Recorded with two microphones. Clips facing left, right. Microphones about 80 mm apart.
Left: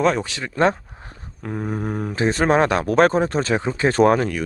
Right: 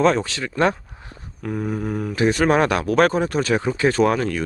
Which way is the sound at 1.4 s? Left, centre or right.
Centre.